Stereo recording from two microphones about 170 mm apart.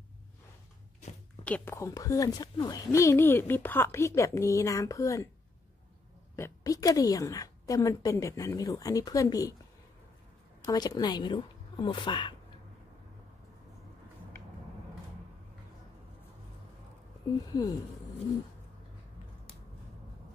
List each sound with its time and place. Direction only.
1.4 s a woman's voice: 10° left (ahead or behind)
6.3 s a woman's voice: 20° left (ahead or behind)
10.7 s a woman's voice: 25° left (ahead or behind)
17.5 s a woman's voice: 20° left (ahead or behind)